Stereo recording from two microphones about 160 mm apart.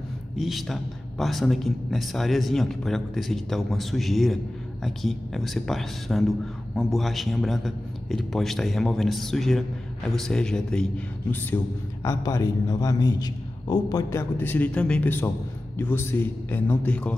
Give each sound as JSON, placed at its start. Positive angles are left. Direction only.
{"t": 0.4, "sound": "speech", "side_deg": 0}
{"t": 11.5, "sound": "a man's voice", "side_deg": 20}
{"t": 14.3, "sound": "a man's voice", "side_deg": 10}